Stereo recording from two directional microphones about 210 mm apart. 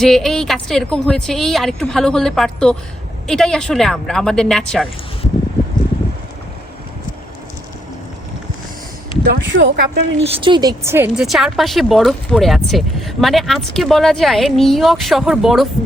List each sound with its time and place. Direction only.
0.0 s speech: centre (ahead or behind)
9.2 s a woman's voice: 50° right (ahead or behind)
10.2 s speech: 25° right (ahead or behind); by 15.6 s centre (ahead or behind)